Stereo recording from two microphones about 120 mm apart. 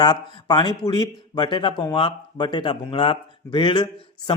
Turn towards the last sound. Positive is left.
turn(degrees=40)  # may be behind; listen again after turning